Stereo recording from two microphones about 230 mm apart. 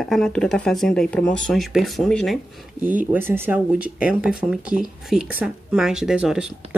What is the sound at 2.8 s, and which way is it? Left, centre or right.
Speech, right.